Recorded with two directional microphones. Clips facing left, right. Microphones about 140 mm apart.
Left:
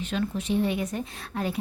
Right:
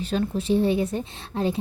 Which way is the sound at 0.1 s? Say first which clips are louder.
Right 5 dB; 35° right (ahead or behind).